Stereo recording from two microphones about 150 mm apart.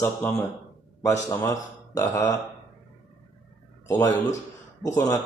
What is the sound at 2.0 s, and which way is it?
Speech, 20° left (ahead or behind).